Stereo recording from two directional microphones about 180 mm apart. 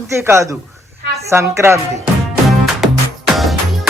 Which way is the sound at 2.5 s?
Centre (ahead or behind).